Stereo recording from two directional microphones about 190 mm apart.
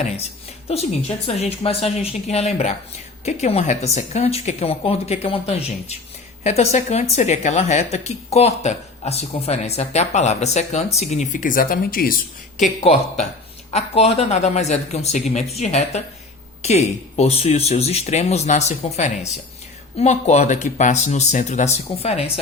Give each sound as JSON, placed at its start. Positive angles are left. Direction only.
{"t": 0.7, "sound": "a woman's voice", "side_deg": 35}
{"t": 12.5, "sound": "a woman's voice", "side_deg": 35}